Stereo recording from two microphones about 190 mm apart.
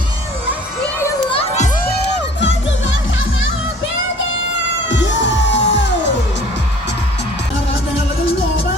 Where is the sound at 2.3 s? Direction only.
75° left (ahead or behind).